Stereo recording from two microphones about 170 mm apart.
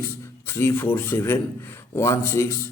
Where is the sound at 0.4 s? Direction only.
15° left (ahead or behind).